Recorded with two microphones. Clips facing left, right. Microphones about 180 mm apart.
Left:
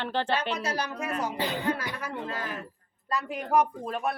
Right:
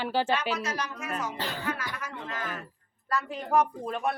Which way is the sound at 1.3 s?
15° left (ahead or behind).